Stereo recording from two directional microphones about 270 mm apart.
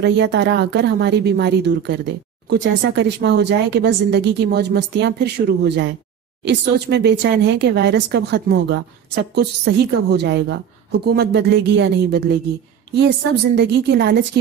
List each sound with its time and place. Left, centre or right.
0.0 s speech: right